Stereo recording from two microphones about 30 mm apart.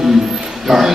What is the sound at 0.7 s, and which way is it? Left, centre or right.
Speech, centre.